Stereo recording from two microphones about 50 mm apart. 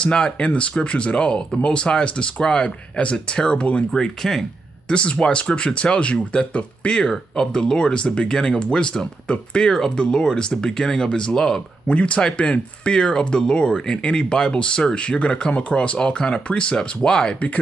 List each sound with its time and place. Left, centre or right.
0.0 s speech: centre
3.9 s speech: centre
4.9 s speech: left
11.9 s speech: left